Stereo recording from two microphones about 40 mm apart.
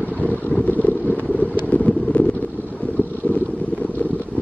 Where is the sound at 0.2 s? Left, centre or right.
Left.